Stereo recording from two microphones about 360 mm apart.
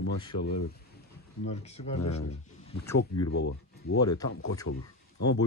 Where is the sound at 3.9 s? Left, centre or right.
Centre.